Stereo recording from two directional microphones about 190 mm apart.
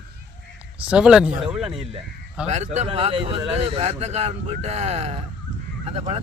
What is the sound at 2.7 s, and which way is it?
Speech, 30° right (ahead or behind).